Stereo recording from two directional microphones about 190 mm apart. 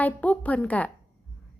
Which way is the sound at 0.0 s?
10° left (ahead or behind).